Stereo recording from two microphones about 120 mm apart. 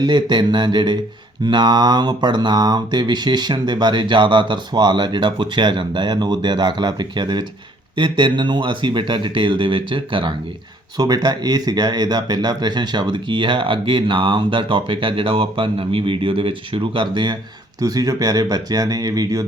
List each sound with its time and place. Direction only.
0.0 s mantra: 35° right (ahead or behind)
7.9 s speech: 45° right (ahead or behind)
10.9 s speech: 35° right (ahead or behind)
17.7 s mantra: 30° right (ahead or behind)